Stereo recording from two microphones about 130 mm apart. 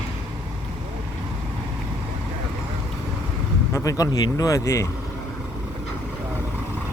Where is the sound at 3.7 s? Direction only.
25° left (ahead or behind).